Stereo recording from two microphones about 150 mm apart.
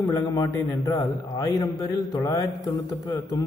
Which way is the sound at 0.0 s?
20° left (ahead or behind).